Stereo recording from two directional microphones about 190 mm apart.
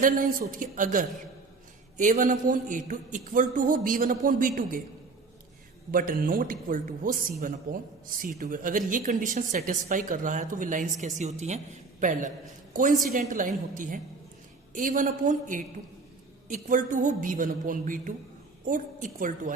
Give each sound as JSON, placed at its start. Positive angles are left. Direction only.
{"t": 0.0, "sound": "a man's voice", "side_deg": -45}
{"t": 5.9, "sound": "a man's voice", "side_deg": -45}